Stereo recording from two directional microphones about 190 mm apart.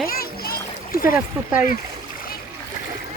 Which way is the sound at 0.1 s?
50° left (ahead or behind).